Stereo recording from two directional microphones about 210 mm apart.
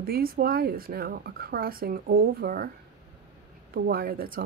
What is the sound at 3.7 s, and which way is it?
Speech, 45° right (ahead or behind).